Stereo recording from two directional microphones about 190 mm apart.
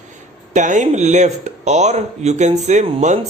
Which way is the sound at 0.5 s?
40° right (ahead or behind).